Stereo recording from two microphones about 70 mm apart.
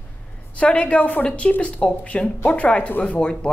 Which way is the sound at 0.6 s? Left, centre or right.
Centre.